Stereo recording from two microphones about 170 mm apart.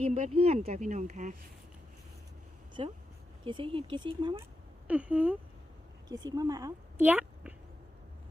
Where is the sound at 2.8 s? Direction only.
35° right (ahead or behind).